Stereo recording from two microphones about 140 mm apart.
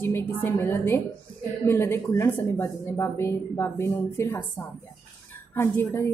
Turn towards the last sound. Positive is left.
turn(degrees=20)  # may be behind; listen again after turning